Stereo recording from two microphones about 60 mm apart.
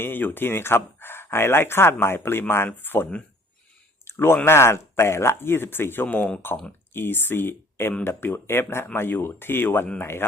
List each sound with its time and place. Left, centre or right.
0.0 s speech: left
4.0 s a sound: left
4.4 s speech: left